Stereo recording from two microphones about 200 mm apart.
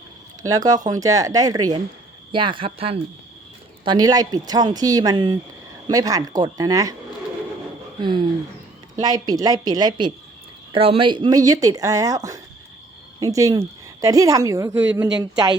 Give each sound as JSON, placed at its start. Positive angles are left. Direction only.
{"t": 0.4, "sound": "speech", "side_deg": -20}
{"t": 8.0, "sound": "a woman's voice", "side_deg": -25}